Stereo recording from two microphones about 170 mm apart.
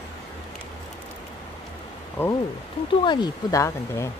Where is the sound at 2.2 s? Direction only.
15° left (ahead or behind).